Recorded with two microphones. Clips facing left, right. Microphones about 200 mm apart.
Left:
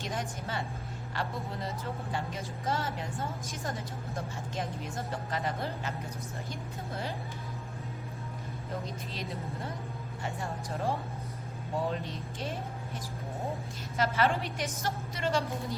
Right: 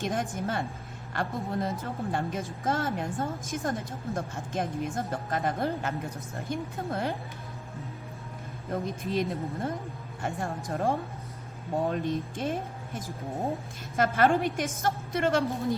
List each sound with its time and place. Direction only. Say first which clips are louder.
0.0 s a woman's voice: right 6 dB; 50° right (ahead or behind)
8.7 s a woman's voice: right 10 dB; 50° right (ahead or behind)